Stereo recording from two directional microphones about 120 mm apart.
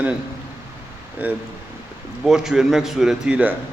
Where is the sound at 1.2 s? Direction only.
10° right (ahead or behind).